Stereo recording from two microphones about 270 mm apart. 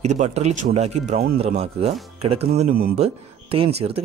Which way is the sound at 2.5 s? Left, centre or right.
Right.